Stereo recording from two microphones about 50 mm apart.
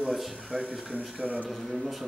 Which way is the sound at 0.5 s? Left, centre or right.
Centre.